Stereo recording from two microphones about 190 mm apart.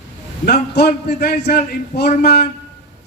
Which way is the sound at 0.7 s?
60° left (ahead or behind).